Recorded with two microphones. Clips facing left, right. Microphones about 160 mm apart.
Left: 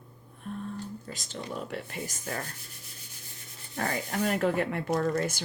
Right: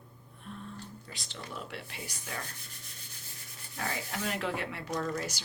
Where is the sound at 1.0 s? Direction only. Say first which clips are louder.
Left 7 dB; 45° left (ahead or behind).